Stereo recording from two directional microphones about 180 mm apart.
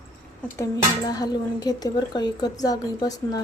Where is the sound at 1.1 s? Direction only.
20° left (ahead or behind).